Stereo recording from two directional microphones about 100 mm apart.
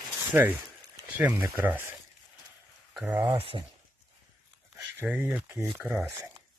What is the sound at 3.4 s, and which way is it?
Speech, 65° right (ahead or behind).